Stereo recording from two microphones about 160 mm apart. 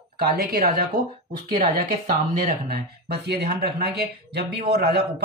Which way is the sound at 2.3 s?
80° right.